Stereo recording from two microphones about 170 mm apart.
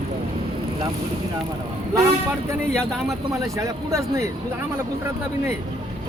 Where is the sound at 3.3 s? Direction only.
20° right (ahead or behind).